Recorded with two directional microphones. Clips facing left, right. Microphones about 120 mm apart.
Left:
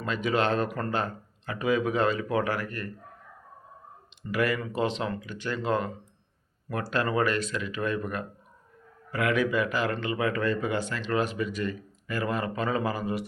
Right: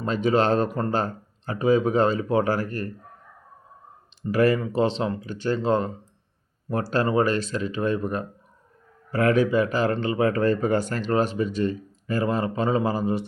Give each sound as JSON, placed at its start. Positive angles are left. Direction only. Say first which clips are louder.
{"t": 0.0, "sound": "speech", "louder": "right 5 dB", "side_deg": -35}
{"t": 4.3, "sound": "speech", "louder": "right 7 dB", "side_deg": -35}